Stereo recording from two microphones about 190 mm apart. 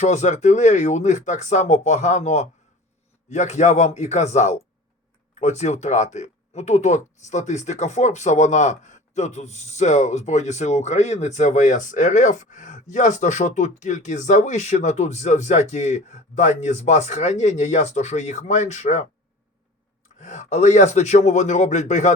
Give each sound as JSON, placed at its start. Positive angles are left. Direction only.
{"t": 0.0, "sound": "speech", "side_deg": 40}
{"t": 20.1, "sound": "speech", "side_deg": 40}